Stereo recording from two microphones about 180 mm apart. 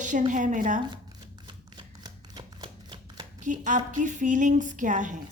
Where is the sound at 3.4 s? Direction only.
45° right (ahead or behind).